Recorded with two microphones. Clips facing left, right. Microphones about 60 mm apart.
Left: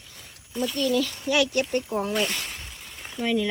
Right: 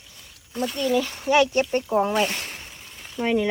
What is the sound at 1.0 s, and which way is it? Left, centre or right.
Speech, right.